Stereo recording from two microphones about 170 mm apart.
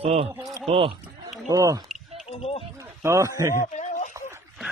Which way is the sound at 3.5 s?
45° left (ahead or behind).